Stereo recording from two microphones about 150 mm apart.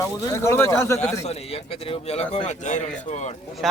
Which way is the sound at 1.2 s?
45° left (ahead or behind).